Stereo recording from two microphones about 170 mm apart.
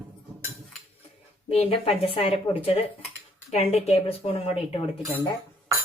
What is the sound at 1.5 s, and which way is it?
A woman's voice, 35° left (ahead or behind).